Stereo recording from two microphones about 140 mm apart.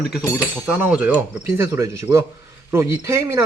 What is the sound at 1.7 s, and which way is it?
Speech, 20° right (ahead or behind).